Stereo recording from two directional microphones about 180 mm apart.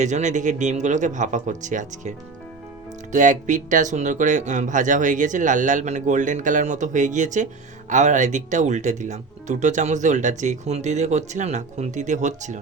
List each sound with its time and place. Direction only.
0.0 s speech: 40° right (ahead or behind)